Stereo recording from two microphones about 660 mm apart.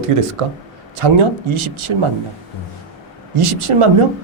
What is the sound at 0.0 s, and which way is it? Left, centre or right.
Speech, right.